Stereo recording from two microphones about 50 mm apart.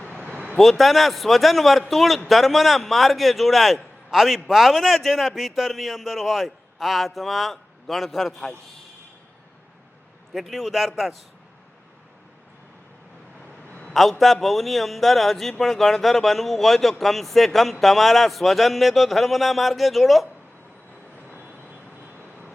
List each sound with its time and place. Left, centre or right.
0.0 s vehicle: centre
0.4 s a man's voice: centre
10.3 s a man's voice: centre
13.9 s a man's voice: centre